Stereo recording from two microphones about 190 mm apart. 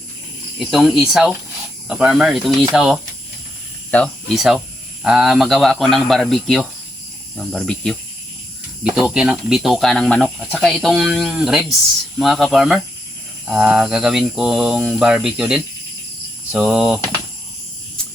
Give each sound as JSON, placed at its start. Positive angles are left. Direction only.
{"t": 0.7, "sound": "speech", "side_deg": 0}